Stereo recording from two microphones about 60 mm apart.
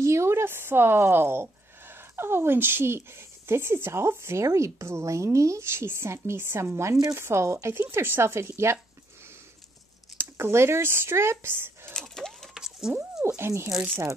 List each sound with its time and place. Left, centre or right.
0.0 s speech: right
7.7 s speech: right
10.1 s speech: right
11.9 s a sound: centre
12.5 s a sound: centre
13.4 s speech: right